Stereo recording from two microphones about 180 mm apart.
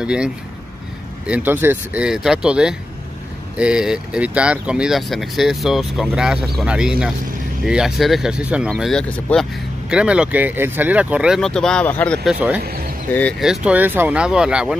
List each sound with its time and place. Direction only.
0.0 s speech: 5° right (ahead or behind)
12.3 s speech: 5° right (ahead or behind)
12.6 s a sound: 55° right (ahead or behind)
13.4 s speech: 5° right (ahead or behind)